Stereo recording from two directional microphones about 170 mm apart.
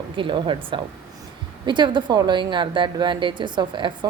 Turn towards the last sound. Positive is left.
turn(degrees=-25)  # may be behind; listen again after turning